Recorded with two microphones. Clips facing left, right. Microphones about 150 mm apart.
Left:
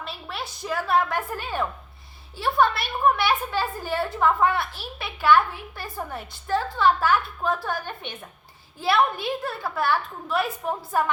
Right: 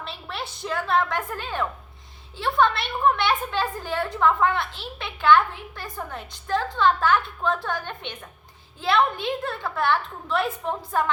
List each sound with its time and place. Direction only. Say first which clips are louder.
0.0 s a sound: even; centre (ahead or behind)
0.6 s a woman's voice: left 1 dB; 5° left (ahead or behind)
4.6 s a child's voice: even; 20° right (ahead or behind)
4.9 s a woman's voice: right 1 dB; 5° left (ahead or behind)